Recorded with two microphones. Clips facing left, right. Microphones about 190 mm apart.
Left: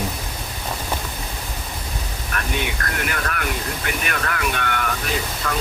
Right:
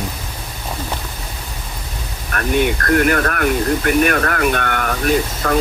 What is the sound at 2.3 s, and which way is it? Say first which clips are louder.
Speech: right 9 dB; 50° right (ahead or behind).